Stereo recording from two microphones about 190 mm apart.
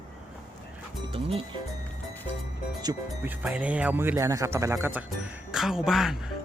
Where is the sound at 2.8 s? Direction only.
10° right (ahead or behind).